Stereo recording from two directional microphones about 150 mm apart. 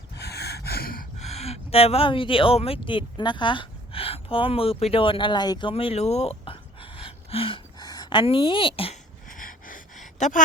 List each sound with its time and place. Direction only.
0.2 s gasp: 90° left
1.2 s speech: 45° left (ahead or behind)
9.3 s gasp: 65° left (ahead or behind)